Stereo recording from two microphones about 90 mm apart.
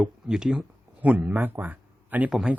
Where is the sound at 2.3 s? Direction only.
5° right (ahead or behind).